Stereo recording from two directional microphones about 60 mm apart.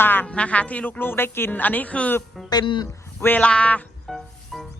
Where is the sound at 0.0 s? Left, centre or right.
Left.